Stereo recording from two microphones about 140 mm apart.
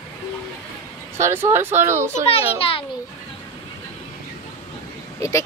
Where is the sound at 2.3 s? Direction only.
45° left (ahead or behind).